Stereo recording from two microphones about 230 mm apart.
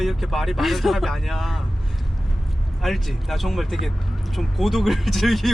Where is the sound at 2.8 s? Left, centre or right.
Centre.